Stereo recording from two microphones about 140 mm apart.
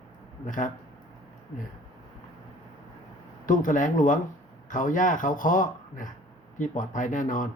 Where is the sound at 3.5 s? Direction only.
70° left (ahead or behind).